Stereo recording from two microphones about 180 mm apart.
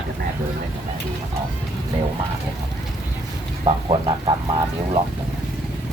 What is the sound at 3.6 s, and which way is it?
Speech, 30° right (ahead or behind).